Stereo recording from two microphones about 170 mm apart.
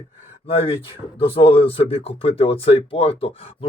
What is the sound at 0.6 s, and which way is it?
Speech, 30° left (ahead or behind).